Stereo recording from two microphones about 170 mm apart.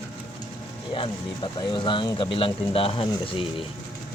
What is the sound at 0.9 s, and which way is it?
Music, 30° left (ahead or behind).